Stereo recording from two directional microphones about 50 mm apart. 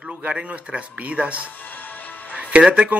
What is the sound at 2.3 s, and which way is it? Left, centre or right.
Speech, right.